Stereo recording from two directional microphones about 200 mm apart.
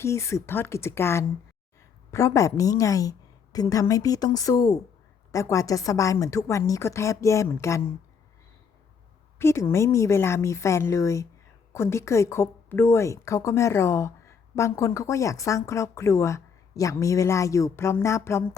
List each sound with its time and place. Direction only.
0.0 s speech: 15° left (ahead or behind)
9.4 s speech: 15° left (ahead or behind)